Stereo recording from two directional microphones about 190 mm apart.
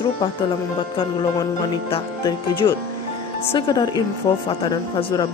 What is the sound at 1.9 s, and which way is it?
Speech, 25° left (ahead or behind).